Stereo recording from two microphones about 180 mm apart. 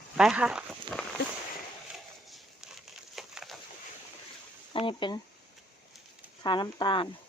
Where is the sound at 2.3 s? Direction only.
Centre (ahead or behind).